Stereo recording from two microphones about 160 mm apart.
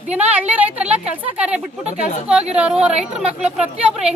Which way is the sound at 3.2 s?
5° right (ahead or behind).